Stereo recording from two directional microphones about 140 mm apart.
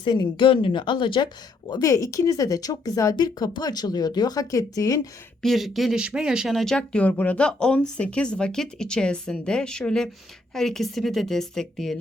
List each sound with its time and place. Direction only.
0.0 s speech: 30° left (ahead or behind)
1.9 s speech: 20° left (ahead or behind)
5.4 s speech: centre (ahead or behind)